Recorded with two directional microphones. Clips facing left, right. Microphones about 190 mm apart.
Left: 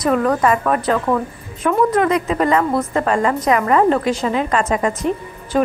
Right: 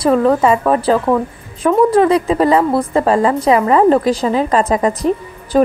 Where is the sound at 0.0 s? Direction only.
30° right (ahead or behind).